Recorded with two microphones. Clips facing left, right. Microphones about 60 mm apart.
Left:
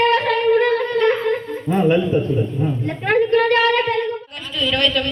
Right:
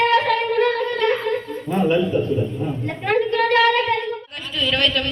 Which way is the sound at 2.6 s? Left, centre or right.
Left.